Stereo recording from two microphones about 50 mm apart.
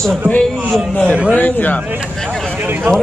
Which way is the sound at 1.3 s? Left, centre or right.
Left.